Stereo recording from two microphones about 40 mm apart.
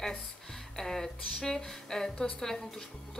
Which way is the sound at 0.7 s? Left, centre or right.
Centre.